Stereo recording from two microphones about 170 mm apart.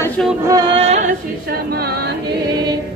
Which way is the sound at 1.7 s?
65° right (ahead or behind).